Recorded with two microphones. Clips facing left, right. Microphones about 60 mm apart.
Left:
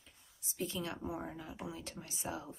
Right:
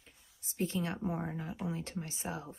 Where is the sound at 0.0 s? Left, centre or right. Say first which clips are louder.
Even; right.